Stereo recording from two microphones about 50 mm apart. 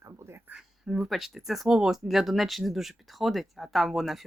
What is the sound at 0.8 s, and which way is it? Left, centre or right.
Speech, centre.